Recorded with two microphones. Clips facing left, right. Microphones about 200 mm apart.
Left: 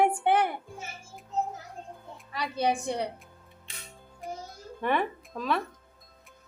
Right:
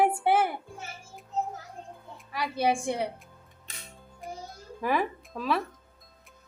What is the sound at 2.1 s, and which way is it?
Music, centre (ahead or behind).